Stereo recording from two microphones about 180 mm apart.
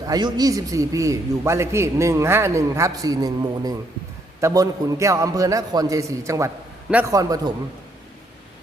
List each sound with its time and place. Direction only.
0.1 s a man's voice: 20° right (ahead or behind)